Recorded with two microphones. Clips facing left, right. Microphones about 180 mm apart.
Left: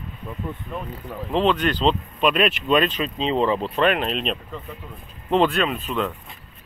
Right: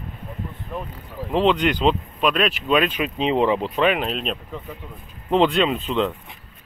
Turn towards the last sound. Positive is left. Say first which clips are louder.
# right 3 dB
turn(degrees=-25)  # may be behind; listen again after turning